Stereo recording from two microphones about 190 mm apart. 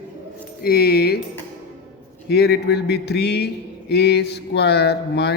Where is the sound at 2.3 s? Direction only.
60° left (ahead or behind).